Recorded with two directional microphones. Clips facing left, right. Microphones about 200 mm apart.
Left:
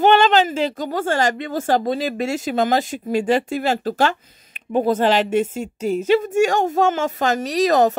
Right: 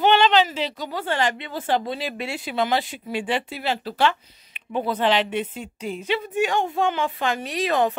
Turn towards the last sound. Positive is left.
turn(degrees=40)  # may be behind; listen again after turning